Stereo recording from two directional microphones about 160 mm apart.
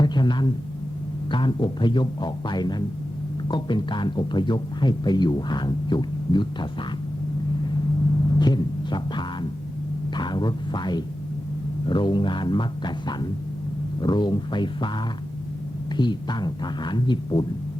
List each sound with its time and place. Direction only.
0.0 s a sound: 30° left (ahead or behind)
1.3 s speech: 30° left (ahead or behind)
8.4 s music: 25° left (ahead or behind)
10.2 s speech: 25° left (ahead or behind)